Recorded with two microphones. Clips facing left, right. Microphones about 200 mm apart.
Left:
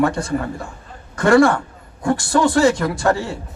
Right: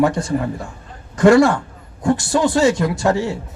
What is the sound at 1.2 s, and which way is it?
A man's voice, 20° right (ahead or behind).